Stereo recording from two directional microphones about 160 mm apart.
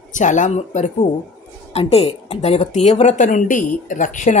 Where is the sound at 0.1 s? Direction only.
50° left (ahead or behind).